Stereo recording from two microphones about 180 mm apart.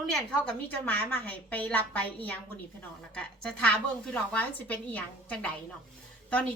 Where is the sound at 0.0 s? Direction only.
5° left (ahead or behind).